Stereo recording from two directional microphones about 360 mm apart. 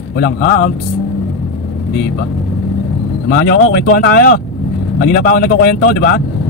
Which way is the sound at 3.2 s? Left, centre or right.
Left.